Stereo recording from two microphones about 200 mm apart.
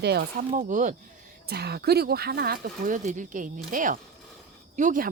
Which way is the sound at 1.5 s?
55° right (ahead or behind).